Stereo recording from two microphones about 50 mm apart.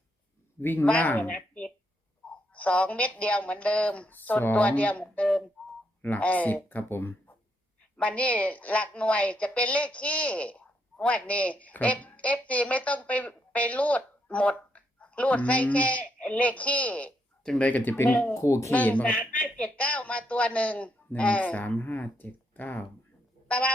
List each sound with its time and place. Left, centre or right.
0.6 s speech: left
1.0 s a woman's voice: left
7.9 s a woman's voice: left
18.3 s speech: left
18.7 s a woman's voice: left
21.8 s speech: left
23.5 s music: left